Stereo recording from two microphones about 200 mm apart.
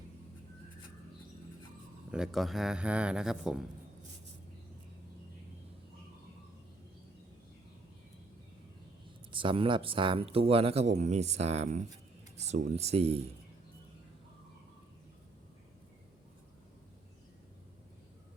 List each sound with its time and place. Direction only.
2.0 s speech: 5° right (ahead or behind)
9.3 s speech: 25° right (ahead or behind)